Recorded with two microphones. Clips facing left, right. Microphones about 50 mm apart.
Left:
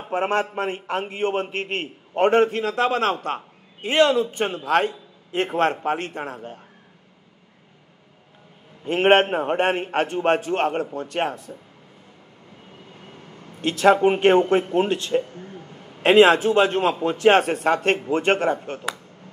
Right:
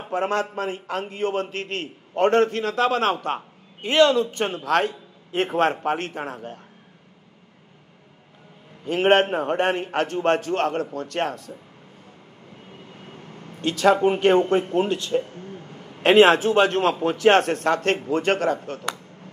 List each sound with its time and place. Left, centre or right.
0.1 s a man's voice: left
0.7 s speech: left
1.3 s a man's voice: left; by 6.6 s centre
8.8 s a man's voice: left
13.6 s a man's voice: centre
15.8 s a man's voice: centre
18.1 s speech: left